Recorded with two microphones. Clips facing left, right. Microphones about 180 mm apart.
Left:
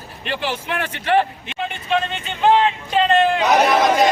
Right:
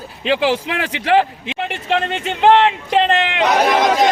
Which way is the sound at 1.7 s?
80° right.